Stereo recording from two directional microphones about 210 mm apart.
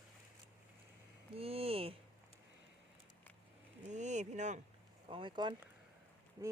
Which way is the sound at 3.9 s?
35° right (ahead or behind).